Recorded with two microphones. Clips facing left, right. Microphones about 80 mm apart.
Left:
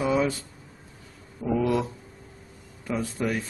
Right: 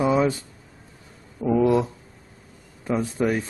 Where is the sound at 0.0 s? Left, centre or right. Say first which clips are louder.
Right 4 dB; right.